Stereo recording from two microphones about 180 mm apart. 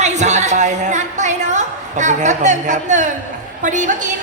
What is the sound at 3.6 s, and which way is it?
Speech, 45° right (ahead or behind).